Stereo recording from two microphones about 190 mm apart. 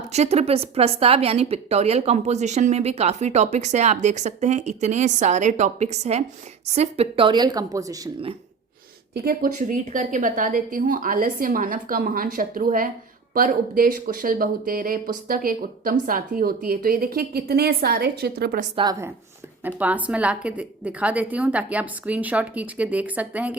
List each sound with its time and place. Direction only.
0.1 s a woman's voice: 35° right (ahead or behind); by 8.1 s 20° right (ahead or behind)
9.1 s speech: 50° right (ahead or behind)
18.8 s a woman's voice: 20° right (ahead or behind)